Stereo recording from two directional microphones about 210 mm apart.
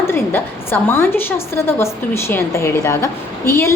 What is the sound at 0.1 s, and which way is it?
A woman's voice, 10° left (ahead or behind).